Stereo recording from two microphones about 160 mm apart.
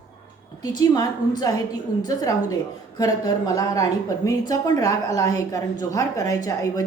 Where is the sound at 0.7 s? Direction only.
25° left (ahead or behind).